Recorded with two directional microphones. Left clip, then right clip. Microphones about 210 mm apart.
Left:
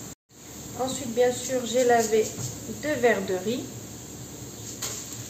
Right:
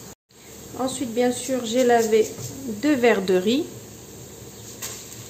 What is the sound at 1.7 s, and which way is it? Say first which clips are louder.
A woman's voice: right 3 dB; 55° right (ahead or behind).